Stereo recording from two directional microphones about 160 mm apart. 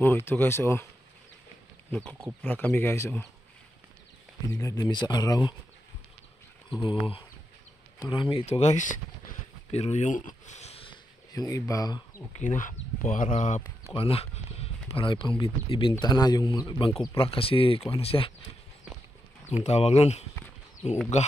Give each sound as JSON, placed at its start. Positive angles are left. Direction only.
{"t": 0.0, "sound": "speech", "side_deg": 15}
{"t": 1.9, "sound": "speech", "side_deg": 10}
{"t": 4.4, "sound": "speech", "side_deg": 20}
{"t": 6.8, "sound": "speech", "side_deg": 30}
{"t": 11.3, "sound": "speech", "side_deg": 20}
{"t": 12.4, "sound": "speech", "side_deg": 55}
{"t": 13.8, "sound": "speech", "side_deg": 35}
{"t": 19.5, "sound": "speech", "side_deg": 40}